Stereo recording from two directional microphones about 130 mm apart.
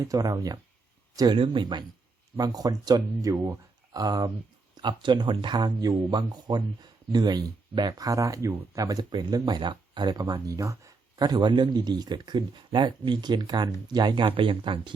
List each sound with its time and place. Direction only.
0.0 s speech: 25° right (ahead or behind); by 14.9 s 40° right (ahead or behind)